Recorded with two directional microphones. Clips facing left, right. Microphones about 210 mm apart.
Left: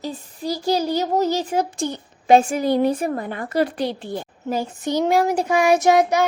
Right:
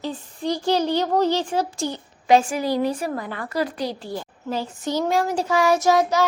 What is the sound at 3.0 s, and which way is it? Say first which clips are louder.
A child's voice: left 3 dB; 20° left (ahead or behind).